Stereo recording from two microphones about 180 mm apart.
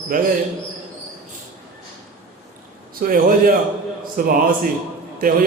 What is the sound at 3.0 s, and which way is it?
A man's voice, 50° right (ahead or behind).